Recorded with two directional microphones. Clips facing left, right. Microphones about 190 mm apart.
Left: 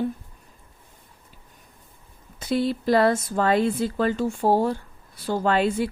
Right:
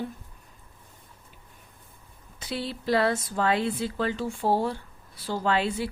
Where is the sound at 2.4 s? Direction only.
45° left (ahead or behind).